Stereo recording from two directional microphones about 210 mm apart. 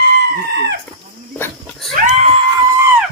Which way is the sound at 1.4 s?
5° left (ahead or behind).